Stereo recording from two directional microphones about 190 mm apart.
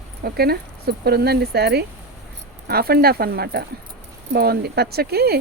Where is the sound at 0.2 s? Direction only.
55° right (ahead or behind).